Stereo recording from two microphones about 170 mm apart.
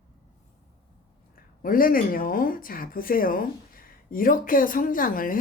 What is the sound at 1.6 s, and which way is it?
Speech, 55° left (ahead or behind).